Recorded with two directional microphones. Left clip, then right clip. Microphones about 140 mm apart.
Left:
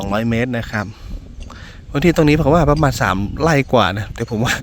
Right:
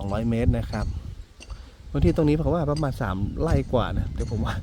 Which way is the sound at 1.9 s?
25° left (ahead or behind).